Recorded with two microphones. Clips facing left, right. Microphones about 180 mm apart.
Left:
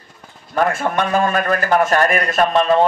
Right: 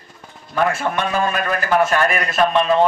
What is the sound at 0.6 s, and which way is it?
Speech, 40° left (ahead or behind).